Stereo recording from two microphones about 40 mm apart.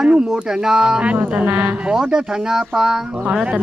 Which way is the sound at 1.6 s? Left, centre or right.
Centre.